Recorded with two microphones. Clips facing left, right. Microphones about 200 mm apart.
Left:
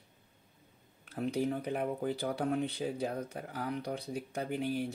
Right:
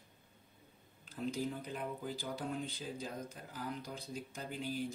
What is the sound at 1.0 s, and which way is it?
Speech, 65° left (ahead or behind).